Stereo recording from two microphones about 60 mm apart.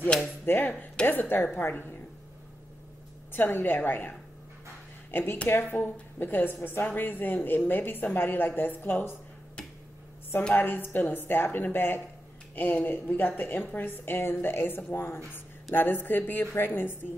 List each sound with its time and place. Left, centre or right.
0.5 s a woman's voice: left
3.3 s a woman's voice: left
10.5 s a woman's voice: left